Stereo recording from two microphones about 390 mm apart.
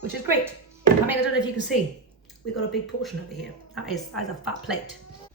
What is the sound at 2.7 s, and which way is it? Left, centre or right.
A woman's voice, centre.